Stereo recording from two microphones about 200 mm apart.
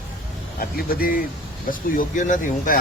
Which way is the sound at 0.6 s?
45° left (ahead or behind).